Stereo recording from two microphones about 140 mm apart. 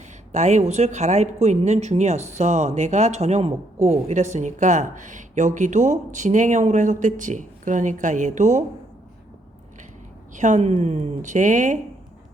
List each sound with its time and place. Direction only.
0.3 s speech: 55° right (ahead or behind)
10.3 s a woman's voice: 60° right (ahead or behind)
11.2 s speech: 60° right (ahead or behind)